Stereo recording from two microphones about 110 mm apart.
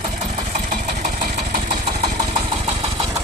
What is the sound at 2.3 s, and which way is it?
Engine, 75° right (ahead or behind).